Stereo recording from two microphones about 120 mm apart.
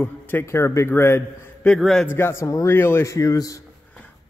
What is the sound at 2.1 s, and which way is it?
A man's voice, 20° left (ahead or behind).